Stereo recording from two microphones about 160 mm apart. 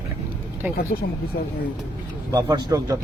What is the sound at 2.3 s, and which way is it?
Speech, 25° right (ahead or behind).